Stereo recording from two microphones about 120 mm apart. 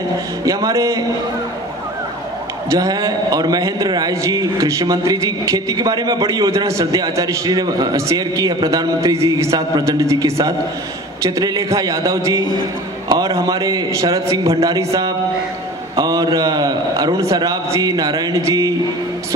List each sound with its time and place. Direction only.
0.5 s a man's voice: 30° right (ahead or behind)
2.7 s a man's voice: 30° right (ahead or behind)